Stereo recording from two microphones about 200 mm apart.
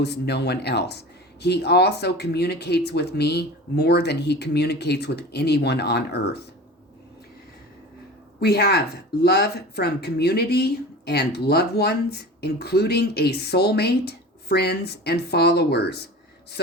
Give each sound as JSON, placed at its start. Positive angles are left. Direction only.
{"t": 0.0, "sound": "speech", "side_deg": 55}
{"t": 8.4, "sound": "speech", "side_deg": 50}